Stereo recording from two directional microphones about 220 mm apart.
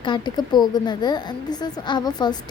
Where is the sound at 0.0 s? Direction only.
20° left (ahead or behind).